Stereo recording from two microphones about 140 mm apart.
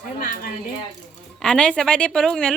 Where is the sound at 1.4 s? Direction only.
5° left (ahead or behind).